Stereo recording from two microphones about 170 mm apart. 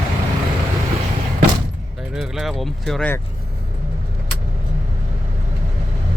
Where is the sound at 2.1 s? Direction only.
Centre (ahead or behind).